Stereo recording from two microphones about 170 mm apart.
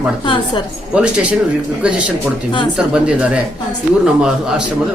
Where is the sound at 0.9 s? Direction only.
5° right (ahead or behind).